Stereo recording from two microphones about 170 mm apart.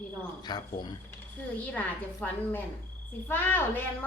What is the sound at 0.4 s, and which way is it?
Speech, 25° left (ahead or behind).